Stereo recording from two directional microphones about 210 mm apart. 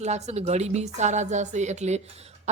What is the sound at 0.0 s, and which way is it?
Speech, 30° right (ahead or behind).